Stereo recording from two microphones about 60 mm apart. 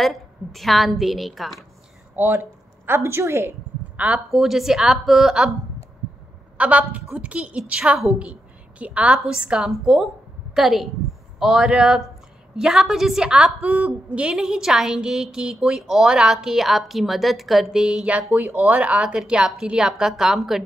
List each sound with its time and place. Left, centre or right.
0.0 s a woman's voice: centre
2.1 s speech: right
2.9 s a woman's voice: right
3.9 s a sound: right
4.3 s a woman's voice: centre
6.6 s a woman's voice: right
7.8 s a woman's voice: centre
8.2 s a woman's voice: right
9.7 s a woman's voice: centre
13.7 s a woman's voice: right
14.2 s a woman's voice: centre
18.3 s speech: right
18.8 s a woman's voice: right; by 20.6 s centre